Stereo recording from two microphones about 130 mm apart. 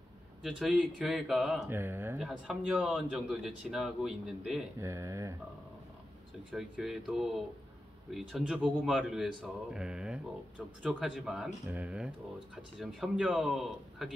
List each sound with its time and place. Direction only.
0.4 s a man's voice: 5° right (ahead or behind)
1.7 s speech: 15° right (ahead or behind)
2.1 s a man's voice: 5° right (ahead or behind)
4.7 s speech: 20° right (ahead or behind)
6.5 s a man's voice: 5° right (ahead or behind)